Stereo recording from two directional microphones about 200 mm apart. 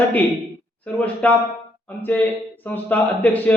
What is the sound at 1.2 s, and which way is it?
A man's voice, 5° left (ahead or behind).